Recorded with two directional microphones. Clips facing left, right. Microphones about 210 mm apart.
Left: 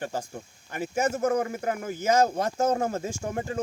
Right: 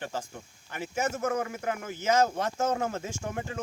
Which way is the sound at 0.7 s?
40° left (ahead or behind).